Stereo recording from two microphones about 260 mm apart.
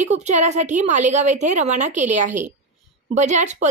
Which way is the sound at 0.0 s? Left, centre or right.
Right.